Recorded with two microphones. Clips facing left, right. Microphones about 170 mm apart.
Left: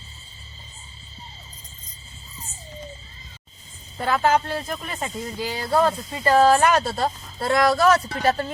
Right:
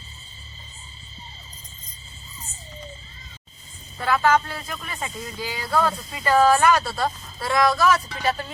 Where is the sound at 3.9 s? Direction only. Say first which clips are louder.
Even; 25° left (ahead or behind).